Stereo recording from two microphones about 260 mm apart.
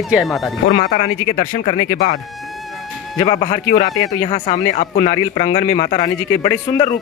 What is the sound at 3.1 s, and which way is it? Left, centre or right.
Speech, centre.